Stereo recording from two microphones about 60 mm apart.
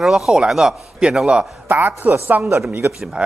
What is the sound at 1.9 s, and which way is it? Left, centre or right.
Speech, right.